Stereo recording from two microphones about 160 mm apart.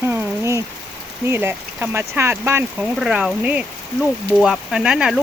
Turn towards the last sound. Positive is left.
turn(degrees=-5)  # may be behind; listen again after turning